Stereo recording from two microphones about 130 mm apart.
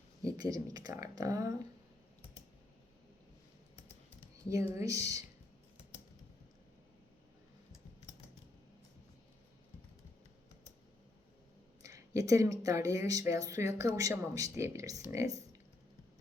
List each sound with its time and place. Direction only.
0.2 s speech: 30° right (ahead or behind)
4.4 s speech: 25° right (ahead or behind)
11.8 s speech: 25° right (ahead or behind)